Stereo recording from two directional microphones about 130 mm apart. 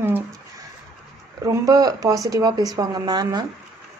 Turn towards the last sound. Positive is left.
turn(degrees=-30)  # may be behind; listen again after turning